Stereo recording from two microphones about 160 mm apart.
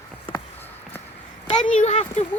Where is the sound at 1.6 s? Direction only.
45° left (ahead or behind).